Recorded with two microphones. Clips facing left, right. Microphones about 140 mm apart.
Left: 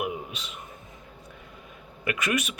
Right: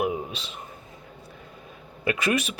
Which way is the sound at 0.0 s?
30° right (ahead or behind).